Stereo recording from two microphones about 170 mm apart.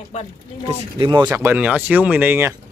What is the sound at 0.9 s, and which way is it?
Speech, 30° right (ahead or behind).